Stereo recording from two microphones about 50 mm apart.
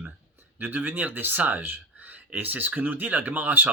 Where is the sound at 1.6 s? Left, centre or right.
Right.